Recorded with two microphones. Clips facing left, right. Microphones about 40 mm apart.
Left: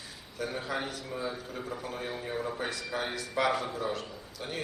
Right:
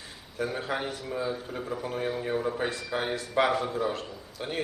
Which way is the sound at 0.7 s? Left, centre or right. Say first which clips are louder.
Right 3 dB; centre.